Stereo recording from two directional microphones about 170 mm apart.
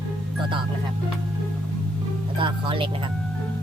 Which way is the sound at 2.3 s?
30° right (ahead or behind).